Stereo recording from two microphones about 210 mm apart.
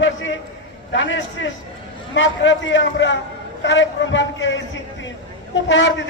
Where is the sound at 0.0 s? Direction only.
65° left (ahead or behind).